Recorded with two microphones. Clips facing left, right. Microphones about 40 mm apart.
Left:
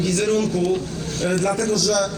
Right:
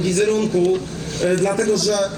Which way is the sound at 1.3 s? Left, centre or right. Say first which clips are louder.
Right 2 dB; right.